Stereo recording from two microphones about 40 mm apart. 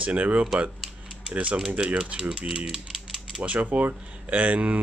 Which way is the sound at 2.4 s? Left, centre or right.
Centre.